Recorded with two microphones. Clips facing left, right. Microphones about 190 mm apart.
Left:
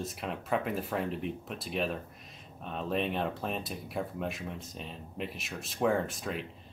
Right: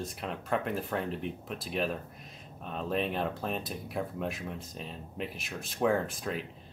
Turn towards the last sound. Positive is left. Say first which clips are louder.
# right 1 dB
turn(degrees=0)  # may be behind; listen again after turning